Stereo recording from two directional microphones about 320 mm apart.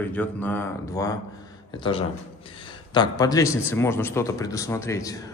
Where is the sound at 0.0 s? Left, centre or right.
Centre.